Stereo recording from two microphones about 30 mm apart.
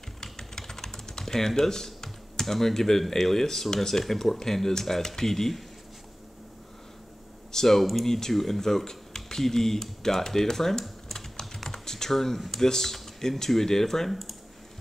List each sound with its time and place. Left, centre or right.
0.2 s typing: centre
2.4 s speech: centre
7.5 s speech: centre
11.7 s typing: centre
12.4 s speech: centre